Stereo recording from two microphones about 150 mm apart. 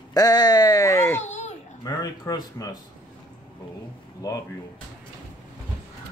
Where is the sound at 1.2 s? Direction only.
50° left (ahead or behind).